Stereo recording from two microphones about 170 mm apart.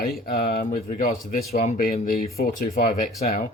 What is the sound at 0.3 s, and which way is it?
Speech, 60° left (ahead or behind).